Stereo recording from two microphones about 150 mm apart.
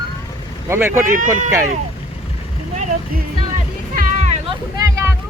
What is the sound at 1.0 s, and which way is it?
Speech, 60° right (ahead or behind).